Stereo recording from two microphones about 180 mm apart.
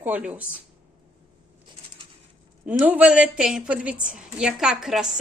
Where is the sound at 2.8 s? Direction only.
10° right (ahead or behind).